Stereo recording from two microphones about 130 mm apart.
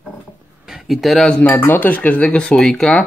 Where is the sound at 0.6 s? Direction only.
5° right (ahead or behind).